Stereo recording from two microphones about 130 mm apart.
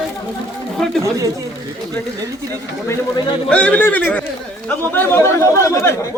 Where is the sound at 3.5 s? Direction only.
10° left (ahead or behind).